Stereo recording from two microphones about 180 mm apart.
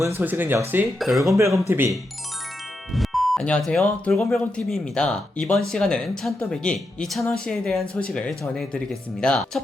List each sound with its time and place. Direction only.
0.0 s speech: 15° right (ahead or behind)
0.9 s speech: centre (ahead or behind)
1.4 s speech: 15° right (ahead or behind)
2.9 s speech: centre (ahead or behind)